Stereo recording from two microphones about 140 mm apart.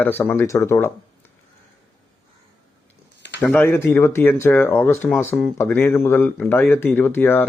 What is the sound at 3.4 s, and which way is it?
A man's voice, 10° left (ahead or behind).